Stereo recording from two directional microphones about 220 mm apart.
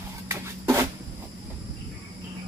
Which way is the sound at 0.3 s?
10° right (ahead or behind).